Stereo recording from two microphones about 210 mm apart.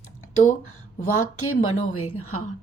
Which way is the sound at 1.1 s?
90° left.